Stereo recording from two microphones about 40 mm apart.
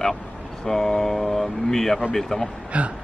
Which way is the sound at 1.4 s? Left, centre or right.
Left.